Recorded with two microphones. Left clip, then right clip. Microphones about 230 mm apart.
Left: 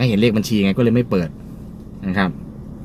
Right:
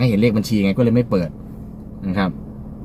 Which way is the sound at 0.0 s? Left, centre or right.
Centre.